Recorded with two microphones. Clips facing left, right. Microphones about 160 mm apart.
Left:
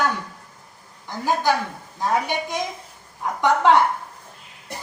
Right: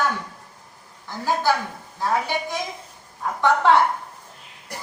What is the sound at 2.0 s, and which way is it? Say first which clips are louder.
A woman's voice: left 1 dB; 20° left (ahead or behind).